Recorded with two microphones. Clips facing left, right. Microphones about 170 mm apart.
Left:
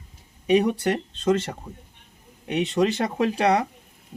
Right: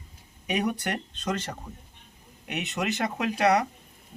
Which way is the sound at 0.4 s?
30° left (ahead or behind).